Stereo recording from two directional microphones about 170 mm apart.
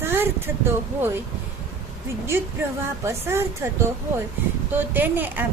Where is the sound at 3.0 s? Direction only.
15° right (ahead or behind).